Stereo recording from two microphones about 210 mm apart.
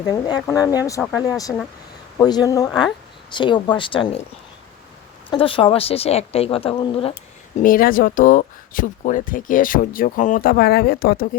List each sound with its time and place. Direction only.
0.1 s a woman's voice: 15° left (ahead or behind)
5.3 s a woman's voice: 25° left (ahead or behind)
7.6 s speech: 45° left (ahead or behind)